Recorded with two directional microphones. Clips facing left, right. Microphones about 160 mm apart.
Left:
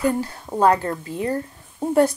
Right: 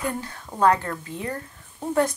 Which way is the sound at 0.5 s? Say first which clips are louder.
Left 2 dB; 25° left (ahead or behind).